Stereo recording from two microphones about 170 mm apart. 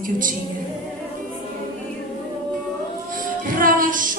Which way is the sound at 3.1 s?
55° right (ahead or behind).